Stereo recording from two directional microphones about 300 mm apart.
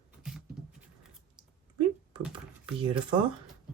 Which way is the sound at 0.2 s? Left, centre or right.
Centre.